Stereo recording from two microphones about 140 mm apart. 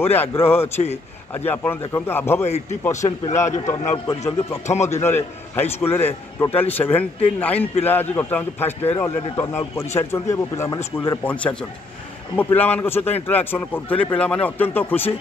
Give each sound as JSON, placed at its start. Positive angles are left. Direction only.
{"t": 0.0, "sound": "a man's voice", "side_deg": 15}
{"t": 2.4, "sound": "a man's voice", "side_deg": 50}
{"t": 4.1, "sound": "speech", "side_deg": 25}
{"t": 4.6, "sound": "a man's voice", "side_deg": 55}
{"t": 5.0, "sound": "a man's voice", "side_deg": 15}
{"t": 12.5, "sound": "a man's voice", "side_deg": 15}